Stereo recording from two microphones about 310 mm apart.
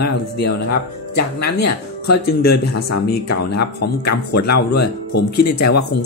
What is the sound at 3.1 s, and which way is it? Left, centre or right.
Speech, left.